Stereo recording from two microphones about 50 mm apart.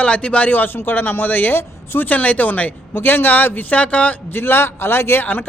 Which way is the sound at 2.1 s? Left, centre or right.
Left.